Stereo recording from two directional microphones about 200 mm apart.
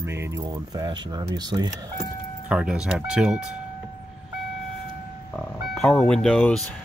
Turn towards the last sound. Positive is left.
turn(degrees=5)  # may be behind; listen again after turning